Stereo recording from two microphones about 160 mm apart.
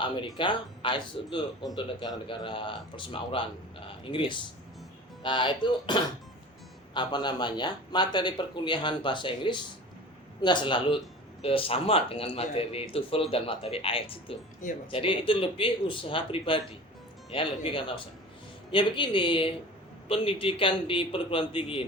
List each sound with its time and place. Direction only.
0.3 s a man's voice: 30° left (ahead or behind)